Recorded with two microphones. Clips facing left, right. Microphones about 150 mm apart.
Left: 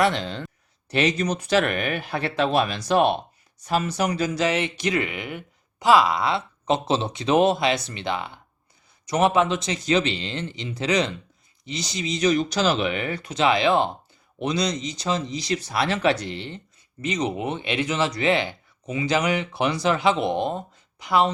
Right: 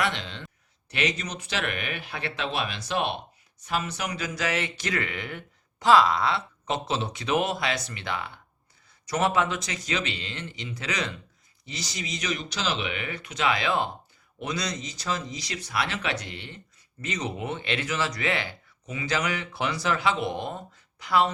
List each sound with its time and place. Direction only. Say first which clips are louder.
0.0 s speech: left 7 dB; 40° left (ahead or behind)
17.0 s speech: left 6 dB; 20° left (ahead or behind)